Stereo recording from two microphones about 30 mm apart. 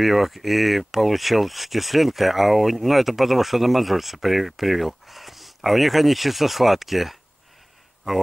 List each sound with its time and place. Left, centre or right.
0.0 s speech: centre